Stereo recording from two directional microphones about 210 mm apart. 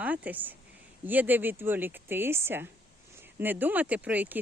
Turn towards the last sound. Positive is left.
turn(degrees=-10)  # may be behind; listen again after turning